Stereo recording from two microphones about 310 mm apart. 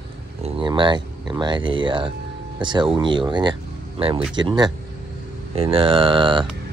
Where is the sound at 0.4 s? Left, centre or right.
Centre.